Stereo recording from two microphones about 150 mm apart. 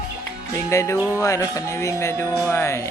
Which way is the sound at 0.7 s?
20° left (ahead or behind).